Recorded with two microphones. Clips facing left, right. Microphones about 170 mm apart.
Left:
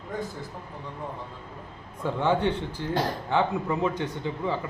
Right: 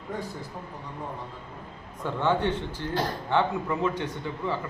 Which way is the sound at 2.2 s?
15° left (ahead or behind).